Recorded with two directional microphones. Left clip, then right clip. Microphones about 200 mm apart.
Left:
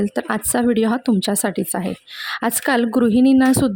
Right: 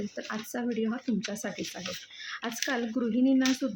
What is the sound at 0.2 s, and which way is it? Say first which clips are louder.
Speech: left 14 dB; 55° left (ahead or behind).